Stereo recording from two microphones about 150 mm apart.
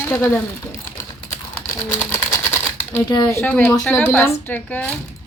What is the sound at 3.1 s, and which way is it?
Speech, 25° left (ahead or behind).